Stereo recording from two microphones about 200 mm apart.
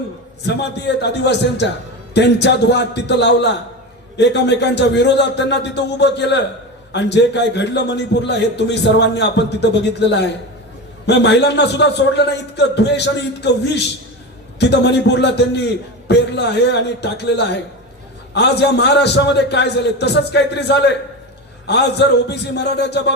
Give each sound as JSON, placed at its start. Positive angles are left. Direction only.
{"t": 0.4, "sound": "a man's voice", "side_deg": 60}